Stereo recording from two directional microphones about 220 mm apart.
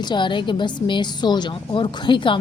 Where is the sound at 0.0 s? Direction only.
20° left (ahead or behind).